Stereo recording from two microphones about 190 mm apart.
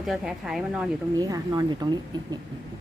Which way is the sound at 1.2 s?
20° right (ahead or behind).